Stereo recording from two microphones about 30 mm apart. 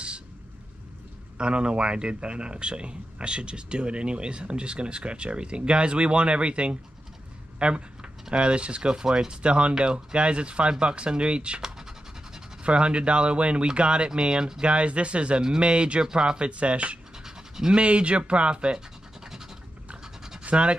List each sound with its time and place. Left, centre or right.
1.4 s speech: right
8.8 s speech: right
12.6 s speech: right
17.2 s pant: centre
17.7 s speech: right
19.2 s scratch: centre
20.4 s speech: right